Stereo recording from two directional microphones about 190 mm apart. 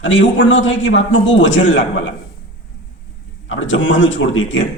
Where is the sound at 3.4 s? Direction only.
80° left.